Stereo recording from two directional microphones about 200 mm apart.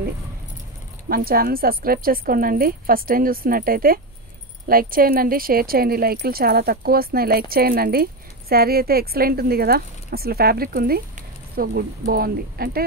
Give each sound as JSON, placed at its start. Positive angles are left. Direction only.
{"t": 1.0, "sound": "speech", "side_deg": -50}